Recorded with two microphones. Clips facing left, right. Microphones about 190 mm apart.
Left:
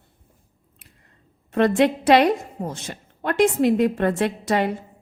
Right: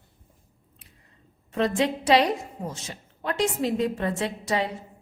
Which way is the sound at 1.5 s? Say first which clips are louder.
Left 6 dB; 55° left (ahead or behind).